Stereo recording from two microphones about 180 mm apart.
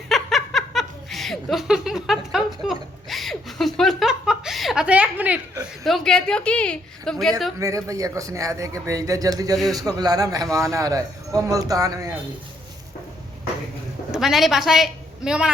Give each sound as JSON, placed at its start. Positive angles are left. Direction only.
{"t": 0.1, "sound": "snicker", "side_deg": 0}
{"t": 7.9, "sound": "a man's voice", "side_deg": -20}
{"t": 14.1, "sound": "a woman's voice", "side_deg": 0}